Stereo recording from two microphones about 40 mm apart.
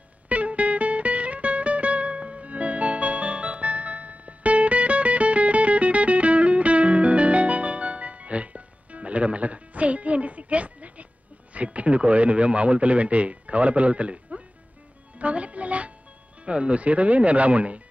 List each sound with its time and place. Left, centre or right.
0.3 s music: right
11.5 s a man's voice: right
15.1 s music: right
16.4 s speech: right